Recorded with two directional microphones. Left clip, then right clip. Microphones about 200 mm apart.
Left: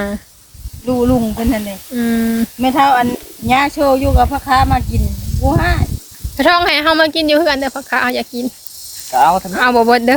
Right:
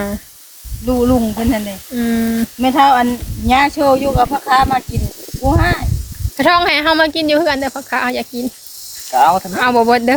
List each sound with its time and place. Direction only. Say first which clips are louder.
0.9 s speech: even; 20° left (ahead or behind)